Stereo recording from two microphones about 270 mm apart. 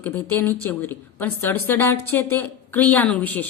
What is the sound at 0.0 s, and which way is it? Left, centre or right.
A woman's voice, centre.